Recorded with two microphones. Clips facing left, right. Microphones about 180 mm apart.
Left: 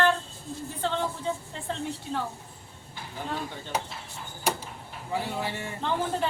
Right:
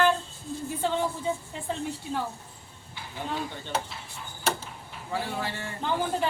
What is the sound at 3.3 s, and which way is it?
Speech, centre (ahead or behind).